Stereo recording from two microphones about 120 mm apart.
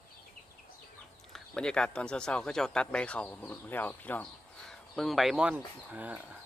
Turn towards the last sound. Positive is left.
turn(degrees=-15)  # may be behind; listen again after turning